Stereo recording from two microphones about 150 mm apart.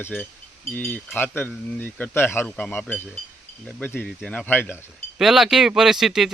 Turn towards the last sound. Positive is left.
turn(degrees=-5)  # may be behind; listen again after turning